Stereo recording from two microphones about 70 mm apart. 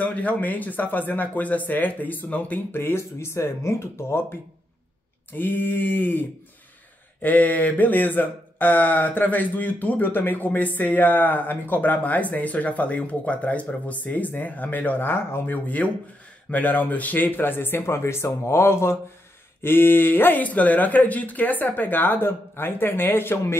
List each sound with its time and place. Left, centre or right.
0.0 s speech: left